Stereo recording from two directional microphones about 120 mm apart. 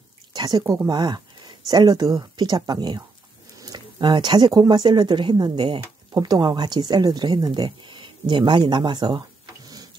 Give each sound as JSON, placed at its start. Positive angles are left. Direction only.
{"t": 0.3, "sound": "speech", "side_deg": -35}